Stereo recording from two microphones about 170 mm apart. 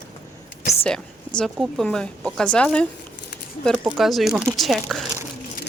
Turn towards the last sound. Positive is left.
turn(degrees=0)  # may be behind; listen again after turning